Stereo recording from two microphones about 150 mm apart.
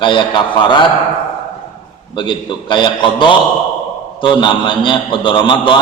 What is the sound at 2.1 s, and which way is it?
A man's voice, 30° left (ahead or behind).